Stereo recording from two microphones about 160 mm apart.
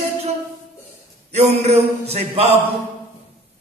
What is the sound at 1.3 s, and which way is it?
A man's voice, 40° right (ahead or behind).